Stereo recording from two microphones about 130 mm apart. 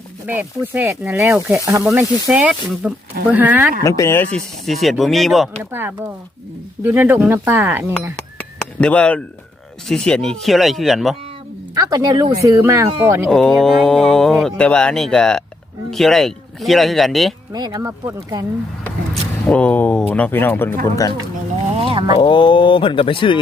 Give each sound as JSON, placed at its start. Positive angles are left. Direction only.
{"t": 0.3, "sound": "speech", "side_deg": -15}
{"t": 2.3, "sound": "speech", "side_deg": -10}
{"t": 3.8, "sound": "speech", "side_deg": 25}
{"t": 4.4, "sound": "speech", "side_deg": 0}
{"t": 6.8, "sound": "speech", "side_deg": -15}
{"t": 8.4, "sound": "a sound", "side_deg": 10}
{"t": 9.9, "sound": "speech", "side_deg": 5}
{"t": 11.7, "sound": "speech", "side_deg": -30}
{"t": 13.3, "sound": "speech", "side_deg": 5}
{"t": 17.5, "sound": "speech", "side_deg": -30}
{"t": 19.5, "sound": "speech", "side_deg": 10}
{"t": 21.8, "sound": "a sound", "side_deg": -45}
{"t": 22.2, "sound": "speech", "side_deg": 40}